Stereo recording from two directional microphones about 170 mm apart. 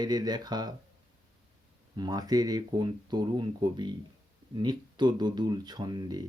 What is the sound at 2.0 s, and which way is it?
Speech, 25° right (ahead or behind).